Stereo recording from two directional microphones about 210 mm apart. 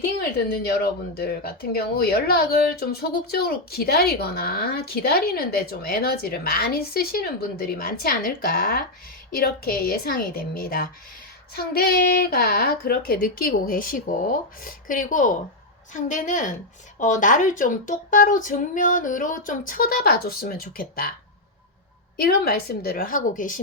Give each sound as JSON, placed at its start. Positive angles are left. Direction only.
{"t": 0.0, "sound": "a woman's voice", "side_deg": 50}
{"t": 22.2, "sound": "speech", "side_deg": 45}